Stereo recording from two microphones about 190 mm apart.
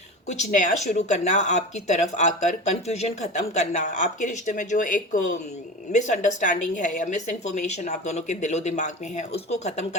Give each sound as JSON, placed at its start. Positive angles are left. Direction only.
{"t": 0.3, "sound": "speech", "side_deg": 40}